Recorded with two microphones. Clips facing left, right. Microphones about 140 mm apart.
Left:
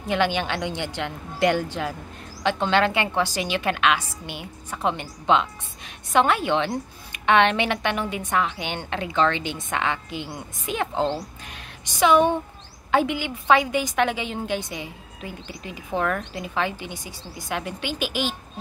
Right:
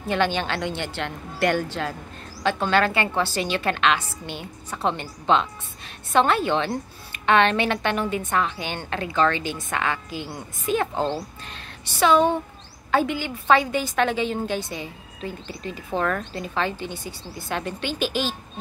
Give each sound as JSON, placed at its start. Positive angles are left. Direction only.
{"t": 0.0, "sound": "a woman's voice", "side_deg": 15}